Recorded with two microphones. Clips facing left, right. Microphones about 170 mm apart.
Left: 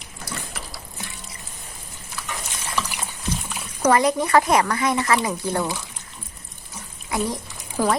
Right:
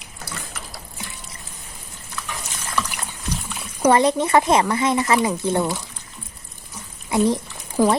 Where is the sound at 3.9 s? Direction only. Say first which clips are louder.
Right 1 dB; 25° right (ahead or behind).